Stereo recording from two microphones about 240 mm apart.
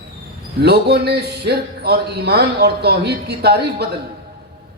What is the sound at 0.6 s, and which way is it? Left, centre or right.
Speech, right.